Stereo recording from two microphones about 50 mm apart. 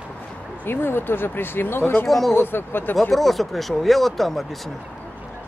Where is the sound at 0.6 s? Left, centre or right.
Left.